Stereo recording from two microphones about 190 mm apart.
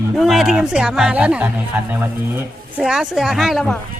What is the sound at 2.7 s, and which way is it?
A woman's voice, 5° right (ahead or behind).